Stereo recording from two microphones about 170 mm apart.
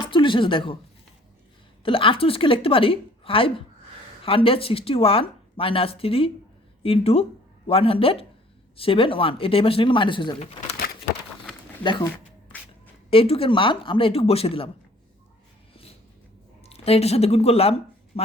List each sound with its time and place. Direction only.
0.1 s speech: 30° left (ahead or behind)
1.8 s speech: 30° left (ahead or behind)
11.8 s speech: 30° left (ahead or behind)
13.1 s speech: 35° left (ahead or behind)
16.6 s speech: 35° left (ahead or behind)